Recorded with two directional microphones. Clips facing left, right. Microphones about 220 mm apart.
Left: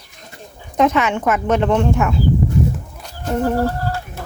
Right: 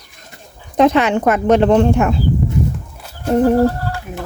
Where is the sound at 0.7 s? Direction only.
35° right (ahead or behind).